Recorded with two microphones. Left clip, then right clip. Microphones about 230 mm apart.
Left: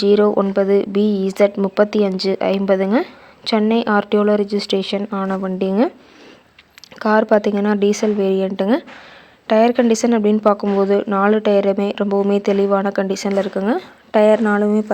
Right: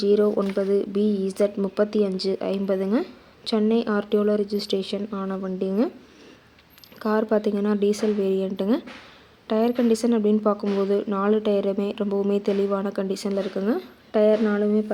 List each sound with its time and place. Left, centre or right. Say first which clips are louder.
0.0 s speech: left 6 dB; left
7.0 s speech: left 8 dB; centre